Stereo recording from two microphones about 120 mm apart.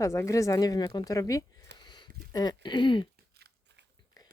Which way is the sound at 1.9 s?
35° left (ahead or behind).